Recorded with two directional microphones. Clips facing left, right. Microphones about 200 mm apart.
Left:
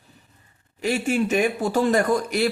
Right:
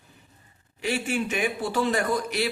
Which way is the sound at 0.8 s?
45° left (ahead or behind).